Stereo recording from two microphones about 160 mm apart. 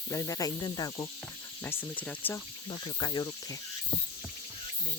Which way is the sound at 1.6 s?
15° left (ahead or behind).